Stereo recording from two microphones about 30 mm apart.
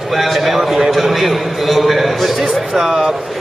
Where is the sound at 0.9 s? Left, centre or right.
Centre.